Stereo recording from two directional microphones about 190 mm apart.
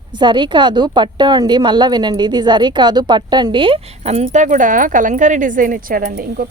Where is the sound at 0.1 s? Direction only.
25° right (ahead or behind).